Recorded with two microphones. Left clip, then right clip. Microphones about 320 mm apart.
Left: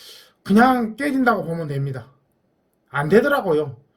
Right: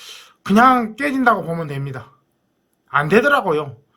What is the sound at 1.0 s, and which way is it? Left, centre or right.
Speech, right.